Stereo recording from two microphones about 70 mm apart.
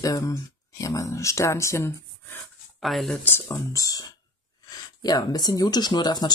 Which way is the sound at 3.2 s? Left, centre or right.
Left.